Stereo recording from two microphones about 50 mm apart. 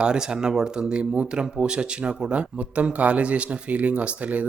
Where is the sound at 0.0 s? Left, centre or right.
Centre.